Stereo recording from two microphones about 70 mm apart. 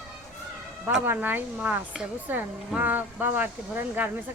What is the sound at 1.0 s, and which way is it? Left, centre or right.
Speech, right.